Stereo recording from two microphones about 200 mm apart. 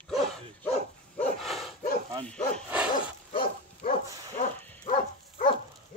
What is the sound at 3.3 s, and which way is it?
Dog, 25° left (ahead or behind).